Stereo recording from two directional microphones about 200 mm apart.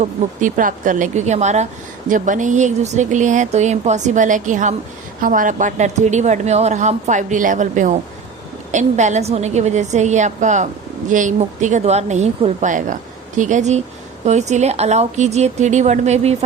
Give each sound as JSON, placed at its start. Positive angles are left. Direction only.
{"t": 0.0, "sound": "a woman's voice", "side_deg": -40}